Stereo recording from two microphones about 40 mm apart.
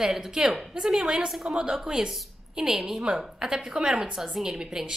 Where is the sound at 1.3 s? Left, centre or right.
Centre.